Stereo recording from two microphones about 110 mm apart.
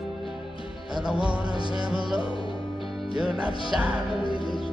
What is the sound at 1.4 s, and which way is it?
Speech, 45° right (ahead or behind).